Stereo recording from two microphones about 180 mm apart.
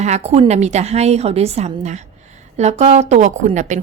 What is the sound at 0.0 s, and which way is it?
A woman's voice, 35° right (ahead or behind).